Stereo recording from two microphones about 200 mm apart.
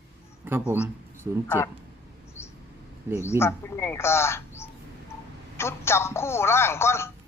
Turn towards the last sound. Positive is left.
turn(degrees=10)  # may be behind; listen again after turning